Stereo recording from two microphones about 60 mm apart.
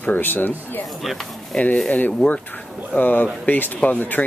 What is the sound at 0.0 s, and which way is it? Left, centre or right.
Speech, left.